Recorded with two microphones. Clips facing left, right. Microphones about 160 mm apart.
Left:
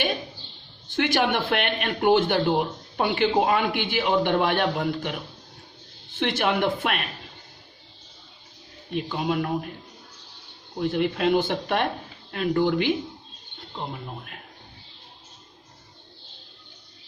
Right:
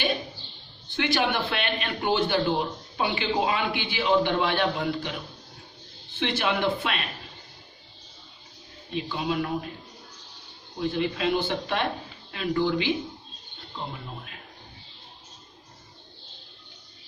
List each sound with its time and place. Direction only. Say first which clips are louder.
0.9 s a man's voice: left 3 dB; 50° left (ahead or behind)
6.1 s a man's voice: left 3 dB; 50° left (ahead or behind)
9.0 s a man's voice: left 2 dB; 50° left (ahead or behind)
10.8 s a man's voice: left 3 dB; 55° left (ahead or behind)